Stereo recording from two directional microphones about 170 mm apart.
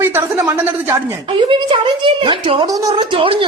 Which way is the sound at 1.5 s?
30° right (ahead or behind).